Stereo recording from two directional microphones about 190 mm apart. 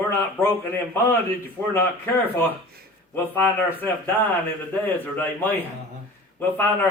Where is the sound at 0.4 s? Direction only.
10° left (ahead or behind).